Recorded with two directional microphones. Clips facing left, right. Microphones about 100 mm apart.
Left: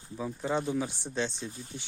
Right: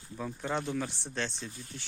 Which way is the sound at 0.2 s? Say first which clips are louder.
Left 3 dB; 10° left (ahead or behind).